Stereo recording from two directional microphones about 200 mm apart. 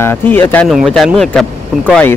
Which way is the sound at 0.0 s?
10° left (ahead or behind).